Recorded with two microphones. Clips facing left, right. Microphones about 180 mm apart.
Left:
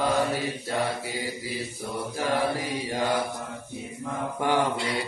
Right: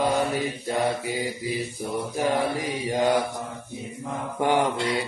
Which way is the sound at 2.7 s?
15° right (ahead or behind).